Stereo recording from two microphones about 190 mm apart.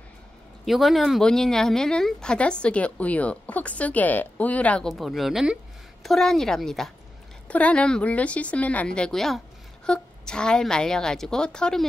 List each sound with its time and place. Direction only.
0.7 s a woman's voice: centre (ahead or behind)